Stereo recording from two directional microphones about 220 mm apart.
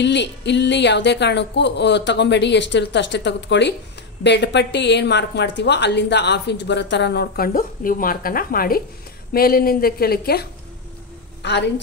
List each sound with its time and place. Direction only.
0.0 s a woman's voice: 50° left (ahead or behind)